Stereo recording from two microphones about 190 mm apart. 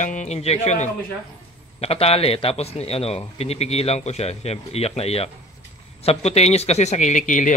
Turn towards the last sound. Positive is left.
turn(degrees=40)  # may be behind; listen again after turning